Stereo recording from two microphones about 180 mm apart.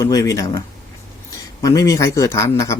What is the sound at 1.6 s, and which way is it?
Speech, 20° left (ahead or behind).